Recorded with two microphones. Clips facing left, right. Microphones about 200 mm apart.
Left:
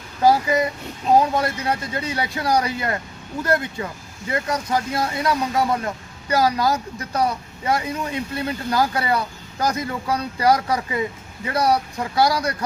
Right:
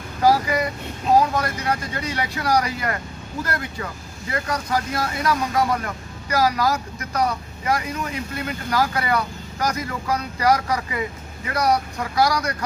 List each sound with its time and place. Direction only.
0.2 s speech: 25° left (ahead or behind)